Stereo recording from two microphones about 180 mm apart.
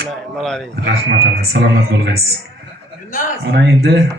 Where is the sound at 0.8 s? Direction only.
60° right (ahead or behind).